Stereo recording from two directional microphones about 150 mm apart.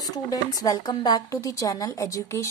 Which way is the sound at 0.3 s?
25° left (ahead or behind).